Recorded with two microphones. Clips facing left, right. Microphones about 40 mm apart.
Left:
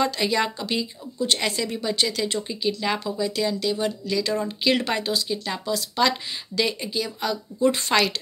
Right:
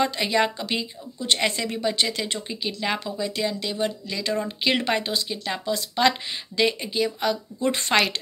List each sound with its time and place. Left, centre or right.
0.0 s speech: right